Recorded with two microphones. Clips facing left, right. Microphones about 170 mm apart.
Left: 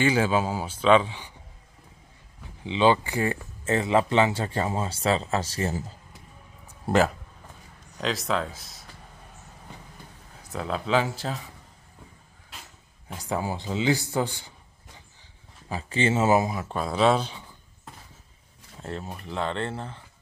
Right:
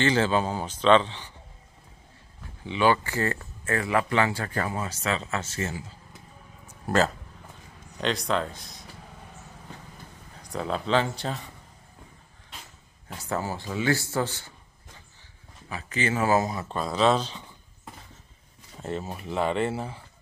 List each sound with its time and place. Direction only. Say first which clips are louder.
0.0 s a man's voice: left 1 dB; 10° left (ahead or behind)
2.6 s a man's voice: left 2 dB; 20° left (ahead or behind); by 5.9 s 40° left (ahead or behind)
8.0 s speech: right 1 dB; centre (ahead or behind)
10.5 s speech: even; 5° left (ahead or behind)
13.2 s a man's voice: left 1 dB; 15° left (ahead or behind)
15.7 s speech: left 3 dB; 30° left (ahead or behind)
16.4 s a man's voice: left 1 dB; 10° left (ahead or behind)
18.8 s speech: right 3 dB; centre (ahead or behind)